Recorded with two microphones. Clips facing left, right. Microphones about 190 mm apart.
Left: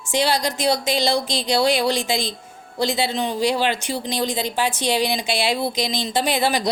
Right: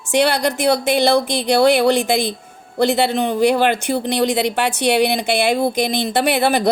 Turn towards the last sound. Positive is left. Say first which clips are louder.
# right 4 dB
turn(degrees=-60)  # may be behind; listen again after turning